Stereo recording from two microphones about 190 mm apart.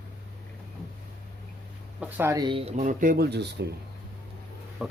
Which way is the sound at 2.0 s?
10° right (ahead or behind).